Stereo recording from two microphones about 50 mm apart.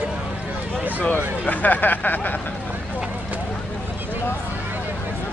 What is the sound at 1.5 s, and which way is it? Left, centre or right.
Speech, left.